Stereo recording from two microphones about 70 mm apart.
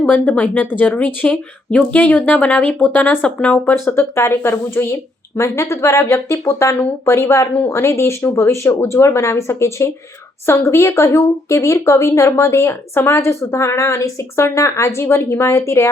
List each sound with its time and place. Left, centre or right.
0.0 s speech: left
3.8 s speech: left